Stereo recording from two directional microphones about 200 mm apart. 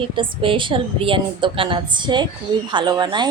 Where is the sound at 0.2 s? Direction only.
25° right (ahead or behind).